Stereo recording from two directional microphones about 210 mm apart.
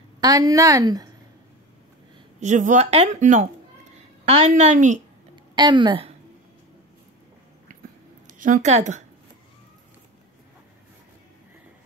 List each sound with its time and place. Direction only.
0.2 s a woman's voice: 15° right (ahead or behind)
2.4 s speech: 35° right (ahead or behind)
5.3 s a woman's voice: 20° right (ahead or behind)
8.3 s a woman's voice: 35° right (ahead or behind)